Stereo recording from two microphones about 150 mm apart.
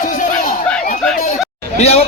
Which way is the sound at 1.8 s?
45° left (ahead or behind).